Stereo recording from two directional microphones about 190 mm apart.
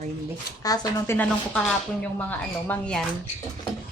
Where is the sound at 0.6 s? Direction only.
20° left (ahead or behind).